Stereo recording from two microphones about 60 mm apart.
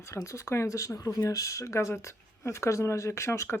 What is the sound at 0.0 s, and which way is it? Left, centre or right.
Speech, left.